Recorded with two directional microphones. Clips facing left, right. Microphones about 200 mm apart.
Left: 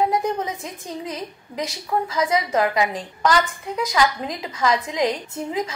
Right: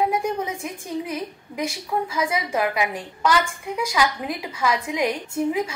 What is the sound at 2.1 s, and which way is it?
A woman's voice, 10° right (ahead or behind).